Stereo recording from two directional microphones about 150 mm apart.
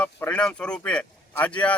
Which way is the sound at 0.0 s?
10° left (ahead or behind).